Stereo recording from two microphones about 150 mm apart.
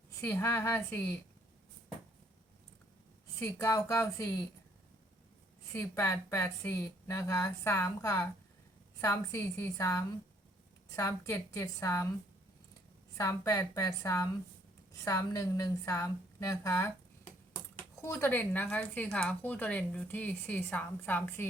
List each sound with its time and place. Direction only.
0.2 s speech: 15° left (ahead or behind)
3.3 s a woman's voice: 20° left (ahead or behind)
5.7 s a woman's voice: 15° left (ahead or behind)
13.1 s a woman's voice: 20° left (ahead or behind)
18.0 s speech: 15° left (ahead or behind)